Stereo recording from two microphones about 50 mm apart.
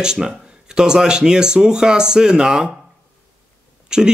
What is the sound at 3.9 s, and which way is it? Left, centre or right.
Speech, centre.